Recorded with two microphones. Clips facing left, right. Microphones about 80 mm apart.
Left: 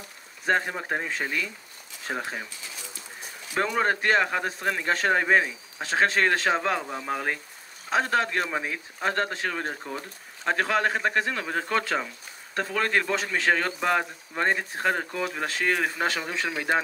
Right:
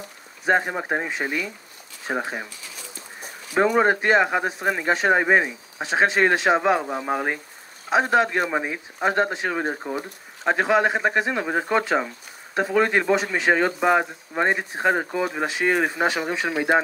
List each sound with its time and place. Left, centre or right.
0.5 s speech: centre
3.5 s speech: centre